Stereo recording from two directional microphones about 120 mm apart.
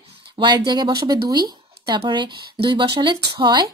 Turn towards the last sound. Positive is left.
turn(degrees=-40)  # may be behind; listen again after turning